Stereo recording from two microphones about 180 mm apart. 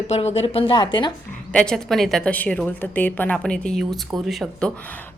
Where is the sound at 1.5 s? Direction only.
5° left (ahead or behind).